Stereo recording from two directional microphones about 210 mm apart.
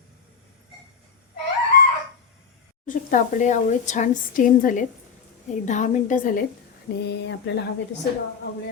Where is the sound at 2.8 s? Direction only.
40° left (ahead or behind).